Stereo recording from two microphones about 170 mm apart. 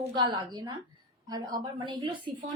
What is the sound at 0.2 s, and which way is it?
A woman's voice, 25° right (ahead or behind).